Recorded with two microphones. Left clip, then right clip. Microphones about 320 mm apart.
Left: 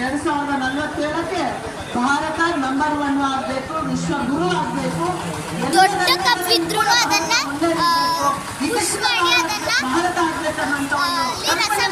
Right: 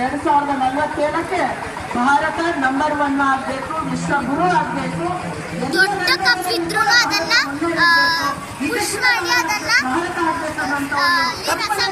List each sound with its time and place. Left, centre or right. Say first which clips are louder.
5.7 s a child's voice: left 1 dB; centre
10.9 s speech: right 5 dB; centre